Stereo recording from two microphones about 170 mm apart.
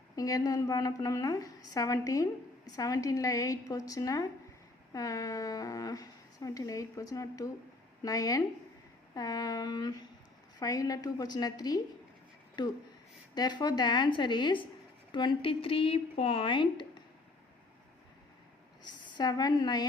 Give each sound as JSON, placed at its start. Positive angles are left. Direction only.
{"t": 0.2, "sound": "a woman's voice", "side_deg": 20}
{"t": 18.8, "sound": "a woman's voice", "side_deg": 25}